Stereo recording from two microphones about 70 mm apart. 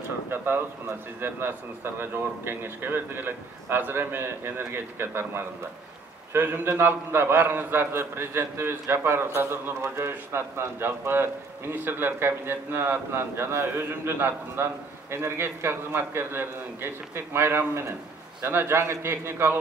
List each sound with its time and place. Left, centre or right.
1.2 s a man's voice: right